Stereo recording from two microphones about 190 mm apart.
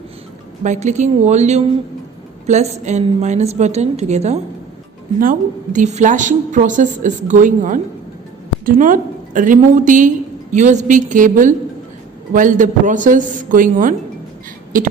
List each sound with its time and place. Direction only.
0.6 s a woman's voice: 40° right (ahead or behind)